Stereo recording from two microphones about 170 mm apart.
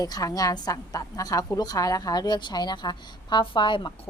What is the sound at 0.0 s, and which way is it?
A woman's voice, 20° left (ahead or behind).